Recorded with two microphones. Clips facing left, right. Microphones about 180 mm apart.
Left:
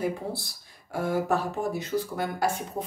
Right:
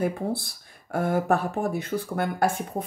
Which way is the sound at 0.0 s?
55° right (ahead or behind).